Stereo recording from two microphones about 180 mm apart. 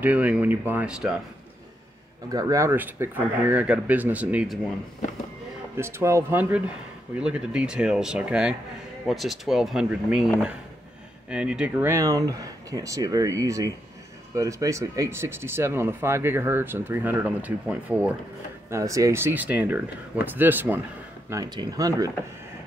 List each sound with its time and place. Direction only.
0.0 s speech: 10° right (ahead or behind)
2.3 s speech: 20° right (ahead or behind)
5.8 s speech: 15° right (ahead or behind)
11.2 s speech: 5° right (ahead or behind)
21.3 s speech: 20° right (ahead or behind)